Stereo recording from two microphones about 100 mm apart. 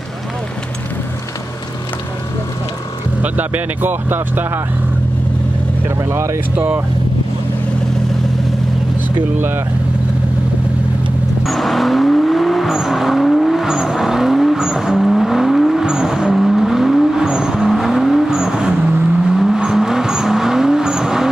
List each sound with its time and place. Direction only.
3.2 s speech: 15° right (ahead or behind)
6.0 s speech: 25° right (ahead or behind)
6.5 s speech: 15° right (ahead or behind)
11.4 s vehicle: centre (ahead or behind)